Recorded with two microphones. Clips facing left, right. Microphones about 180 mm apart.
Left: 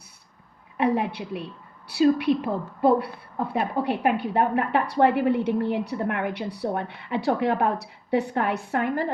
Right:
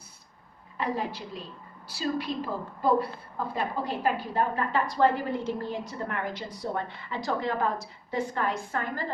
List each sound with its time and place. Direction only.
0.8 s a woman's voice: 65° left (ahead or behind)